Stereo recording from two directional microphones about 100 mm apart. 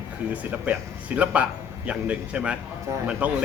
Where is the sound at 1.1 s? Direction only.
15° right (ahead or behind).